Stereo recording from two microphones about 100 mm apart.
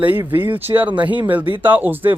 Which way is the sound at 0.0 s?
20° right (ahead or behind).